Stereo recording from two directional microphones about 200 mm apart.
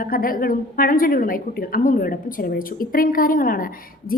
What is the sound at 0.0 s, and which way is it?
A woman's voice, 45° left (ahead or behind).